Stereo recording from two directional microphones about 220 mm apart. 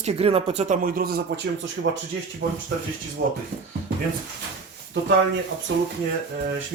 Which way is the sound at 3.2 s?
55° right (ahead or behind).